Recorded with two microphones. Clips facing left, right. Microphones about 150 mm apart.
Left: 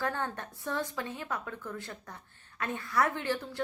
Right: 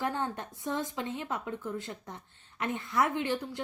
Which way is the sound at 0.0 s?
20° right (ahead or behind).